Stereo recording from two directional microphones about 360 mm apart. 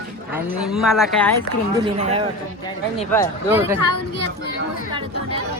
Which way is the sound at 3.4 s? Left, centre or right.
Centre.